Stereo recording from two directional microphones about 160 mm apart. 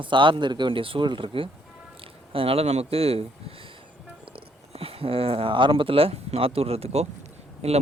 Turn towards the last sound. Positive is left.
turn(degrees=-40)  # may be behind; listen again after turning